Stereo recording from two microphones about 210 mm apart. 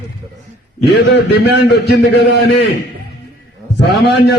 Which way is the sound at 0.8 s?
50° left (ahead or behind).